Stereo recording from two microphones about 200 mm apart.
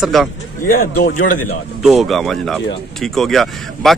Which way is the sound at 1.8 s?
Centre (ahead or behind).